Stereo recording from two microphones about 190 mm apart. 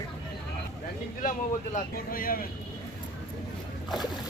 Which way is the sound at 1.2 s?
45° left (ahead or behind).